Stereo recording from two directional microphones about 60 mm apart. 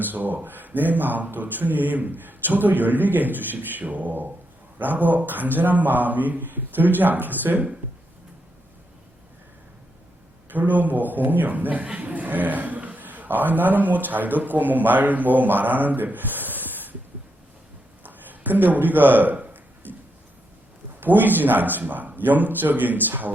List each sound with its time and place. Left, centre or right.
0.0 s a man's voice: right
10.5 s a man's voice: right
18.0 s a sound: right
21.0 s a man's voice: right